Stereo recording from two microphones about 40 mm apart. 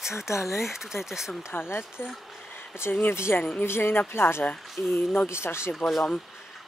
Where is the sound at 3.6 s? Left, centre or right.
Left.